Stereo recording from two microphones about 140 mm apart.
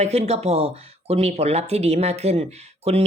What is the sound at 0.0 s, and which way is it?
Speech, 50° right (ahead or behind).